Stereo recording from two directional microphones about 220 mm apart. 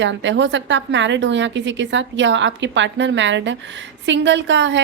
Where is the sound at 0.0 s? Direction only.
55° right (ahead or behind).